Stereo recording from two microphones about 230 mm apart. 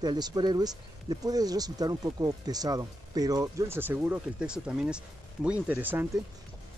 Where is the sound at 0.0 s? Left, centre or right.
Centre.